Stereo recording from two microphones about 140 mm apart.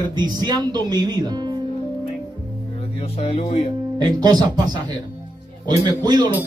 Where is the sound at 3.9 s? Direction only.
30° right (ahead or behind).